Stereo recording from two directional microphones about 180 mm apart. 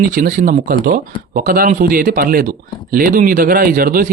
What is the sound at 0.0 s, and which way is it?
A man's voice, 50° right (ahead or behind).